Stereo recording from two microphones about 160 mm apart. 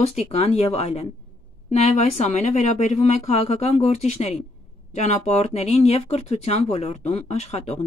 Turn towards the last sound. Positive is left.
turn(degrees=40)  # may be behind; listen again after turning